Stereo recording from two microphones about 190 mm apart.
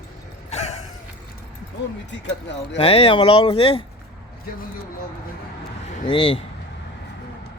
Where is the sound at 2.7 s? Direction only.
30° left (ahead or behind).